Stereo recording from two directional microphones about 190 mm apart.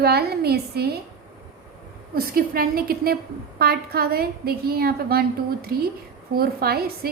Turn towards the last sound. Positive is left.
turn(degrees=-55)  # may be behind; listen again after turning